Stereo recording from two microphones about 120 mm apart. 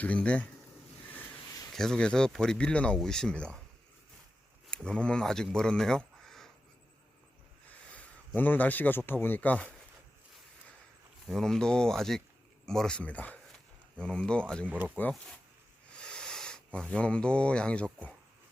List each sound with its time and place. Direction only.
0.0 s speech: 10° left (ahead or behind)
1.7 s speech: 5° left (ahead or behind)
4.7 s speech: 10° left (ahead or behind)
8.4 s speech: 15° left (ahead or behind)
11.3 s speech: 5° left (ahead or behind)
14.7 s speech: 15° right (ahead or behind)
15.9 s a sound: 10° left (ahead or behind)
16.9 s speech: 10° left (ahead or behind)